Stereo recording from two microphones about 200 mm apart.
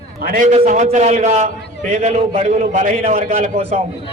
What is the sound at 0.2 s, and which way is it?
A man's voice, 45° right (ahead or behind).